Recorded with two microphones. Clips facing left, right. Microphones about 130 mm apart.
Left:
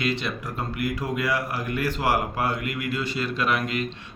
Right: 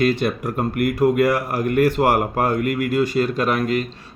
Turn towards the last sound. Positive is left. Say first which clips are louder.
# right 5 dB
turn(degrees=-45)  # may be behind; listen again after turning